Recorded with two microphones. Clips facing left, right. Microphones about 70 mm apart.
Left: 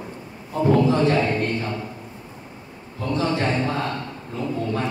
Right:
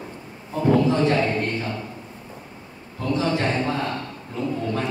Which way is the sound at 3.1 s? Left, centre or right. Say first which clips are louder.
Even; centre.